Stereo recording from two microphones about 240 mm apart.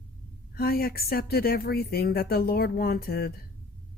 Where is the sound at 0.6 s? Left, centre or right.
Left.